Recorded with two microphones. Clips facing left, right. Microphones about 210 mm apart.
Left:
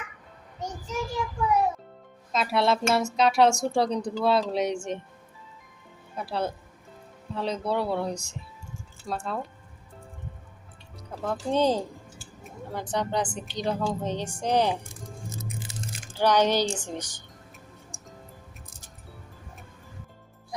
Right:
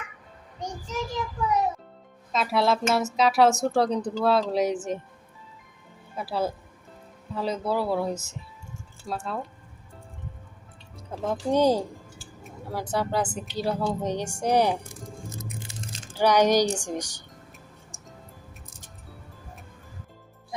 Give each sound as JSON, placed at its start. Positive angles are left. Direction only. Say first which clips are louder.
{"t": 0.6, "sound": "child singing", "louder": "even", "side_deg": 10}
{"t": 2.3, "sound": "speech", "louder": "right 1 dB", "side_deg": 0}
{"t": 6.1, "sound": "speech", "louder": "right 2 dB", "side_deg": 0}
{"t": 10.9, "sound": "speech", "louder": "right 2 dB", "side_deg": -20}
{"t": 12.4, "sound": "a sound", "louder": "right 2 dB", "side_deg": 0}
{"t": 12.9, "sound": "speech", "louder": "right 1 dB", "side_deg": -5}
{"t": 16.1, "sound": "speech", "louder": "right 2 dB", "side_deg": -10}
{"t": 20.5, "sound": "music", "louder": "right 1 dB", "side_deg": 0}